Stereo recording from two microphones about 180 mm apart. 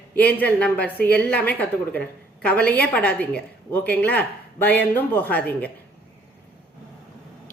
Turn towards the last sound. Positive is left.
turn(degrees=10)  # may be behind; listen again after turning